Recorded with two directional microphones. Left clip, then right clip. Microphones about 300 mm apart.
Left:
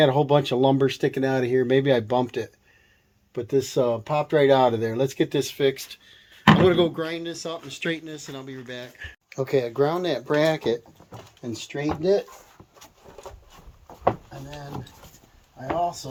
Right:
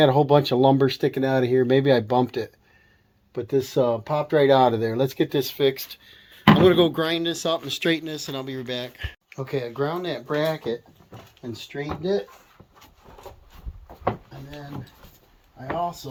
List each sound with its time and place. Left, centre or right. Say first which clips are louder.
0.0 s speech: right 2 dB; centre
6.7 s speech: right 3 dB; right
9.3 s speech: left 6 dB; left